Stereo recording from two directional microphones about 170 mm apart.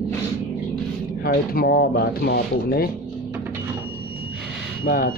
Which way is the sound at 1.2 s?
65° left (ahead or behind).